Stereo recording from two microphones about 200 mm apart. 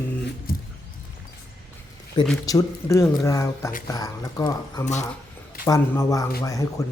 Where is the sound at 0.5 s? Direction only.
45° left (ahead or behind).